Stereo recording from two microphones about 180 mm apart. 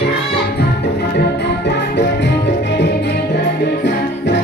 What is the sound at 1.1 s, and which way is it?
Music, 70° left (ahead or behind).